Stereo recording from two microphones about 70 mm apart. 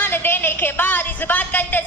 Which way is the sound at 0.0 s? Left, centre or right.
Left.